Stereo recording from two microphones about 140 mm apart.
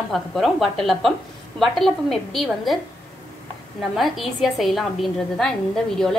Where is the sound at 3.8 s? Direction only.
Centre (ahead or behind).